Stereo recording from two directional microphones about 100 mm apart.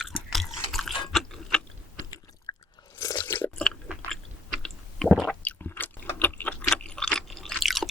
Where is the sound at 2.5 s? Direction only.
45° left (ahead or behind).